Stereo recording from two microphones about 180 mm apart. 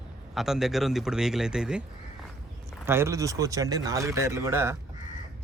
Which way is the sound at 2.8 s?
15° right (ahead or behind).